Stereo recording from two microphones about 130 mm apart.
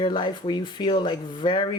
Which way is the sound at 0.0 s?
35° left (ahead or behind).